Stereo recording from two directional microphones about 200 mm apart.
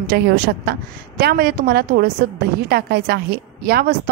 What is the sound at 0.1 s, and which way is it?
A woman's voice, 55° right (ahead or behind).